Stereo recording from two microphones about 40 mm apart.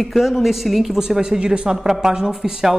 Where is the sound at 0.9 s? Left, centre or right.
Centre.